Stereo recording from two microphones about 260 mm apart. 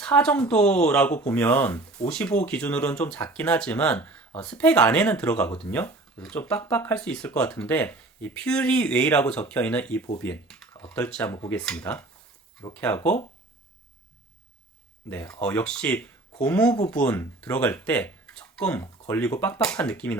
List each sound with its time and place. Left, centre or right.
0.0 s speech: centre
15.1 s speech: centre